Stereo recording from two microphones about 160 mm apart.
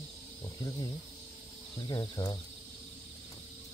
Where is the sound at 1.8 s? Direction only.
25° left (ahead or behind).